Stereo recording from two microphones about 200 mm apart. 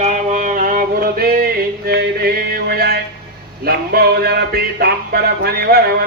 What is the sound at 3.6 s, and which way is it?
Music, 50° right (ahead or behind).